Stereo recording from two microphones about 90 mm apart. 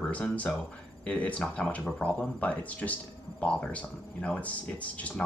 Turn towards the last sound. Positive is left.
turn(degrees=15)  # may be behind; listen again after turning